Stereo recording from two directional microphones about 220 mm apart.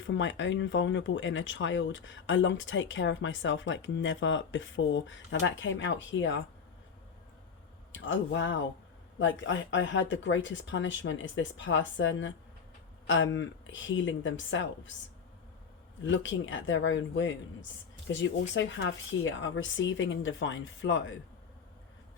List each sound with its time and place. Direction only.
0.1 s speech: 55° left (ahead or behind)
7.9 s speech: 55° left (ahead or behind)
16.0 s speech: 55° left (ahead or behind)